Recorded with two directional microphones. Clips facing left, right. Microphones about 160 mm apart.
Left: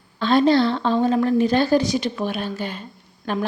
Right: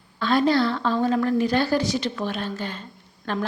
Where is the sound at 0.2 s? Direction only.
25° left (ahead or behind).